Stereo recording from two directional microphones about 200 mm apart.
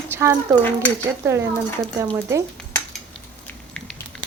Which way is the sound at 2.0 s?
15° right (ahead or behind).